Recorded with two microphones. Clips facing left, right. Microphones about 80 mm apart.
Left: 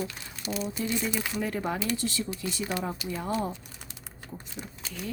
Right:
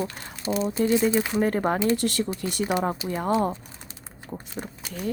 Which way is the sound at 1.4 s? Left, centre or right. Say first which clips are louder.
Right 6 dB; right.